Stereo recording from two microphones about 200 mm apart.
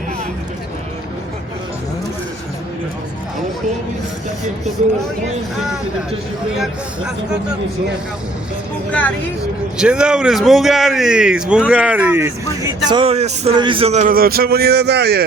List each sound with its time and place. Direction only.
6.6 s a man's voice: 5° right (ahead or behind)
8.9 s speech: 5° left (ahead or behind)
9.7 s a man's voice: 5° right (ahead or behind)
12.9 s speech: 30° right (ahead or behind); by 15.2 s 55° right (ahead or behind)